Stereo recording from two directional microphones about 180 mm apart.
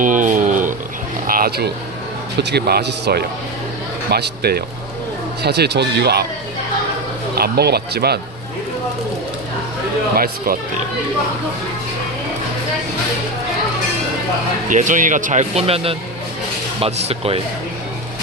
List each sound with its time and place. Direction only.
0.0 s a sound: 45° right (ahead or behind)
1.3 s speech: 55° right (ahead or behind)
7.3 s speech: 60° right (ahead or behind)
10.2 s speech: 55° right (ahead or behind)
14.7 s speech: 45° right (ahead or behind)